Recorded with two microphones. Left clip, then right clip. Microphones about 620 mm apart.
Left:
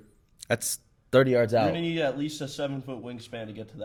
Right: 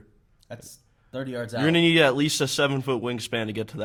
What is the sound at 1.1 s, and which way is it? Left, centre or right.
Speech, left.